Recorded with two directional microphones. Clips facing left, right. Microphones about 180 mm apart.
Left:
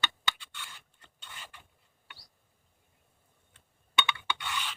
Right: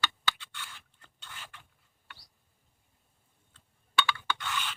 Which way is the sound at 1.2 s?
10° left (ahead or behind).